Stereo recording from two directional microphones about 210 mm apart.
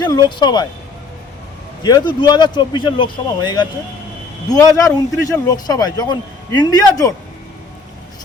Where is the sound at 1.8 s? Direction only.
20° left (ahead or behind).